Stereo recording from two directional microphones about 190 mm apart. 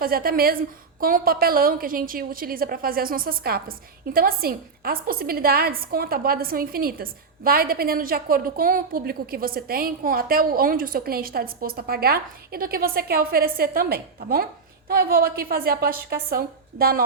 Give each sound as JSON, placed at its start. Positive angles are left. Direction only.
{"t": 0.0, "sound": "a woman's voice", "side_deg": -50}